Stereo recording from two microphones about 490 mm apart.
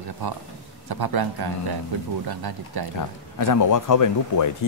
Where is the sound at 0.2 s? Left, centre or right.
Right.